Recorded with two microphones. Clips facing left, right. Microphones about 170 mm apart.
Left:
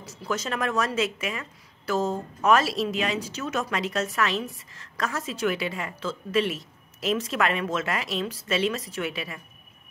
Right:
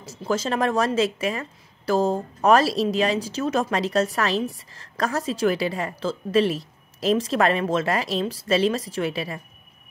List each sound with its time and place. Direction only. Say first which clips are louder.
0.0 s speech: right 5 dB; 30° right (ahead or behind)